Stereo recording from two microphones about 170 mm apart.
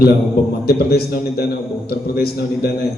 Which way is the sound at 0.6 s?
65° left (ahead or behind).